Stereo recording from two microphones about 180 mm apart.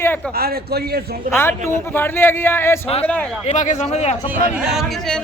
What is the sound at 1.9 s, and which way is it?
Speech, 10° left (ahead or behind).